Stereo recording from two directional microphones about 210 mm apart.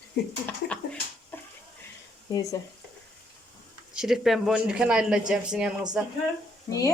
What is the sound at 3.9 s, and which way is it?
Speech, centre (ahead or behind).